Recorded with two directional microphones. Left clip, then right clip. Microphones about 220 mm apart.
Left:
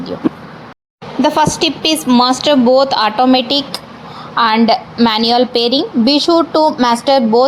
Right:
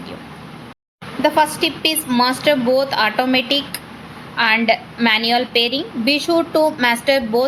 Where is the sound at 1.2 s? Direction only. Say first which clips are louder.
Left 3 dB; 35° left (ahead or behind).